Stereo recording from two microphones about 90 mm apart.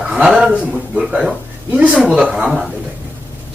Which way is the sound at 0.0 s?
5° right (ahead or behind).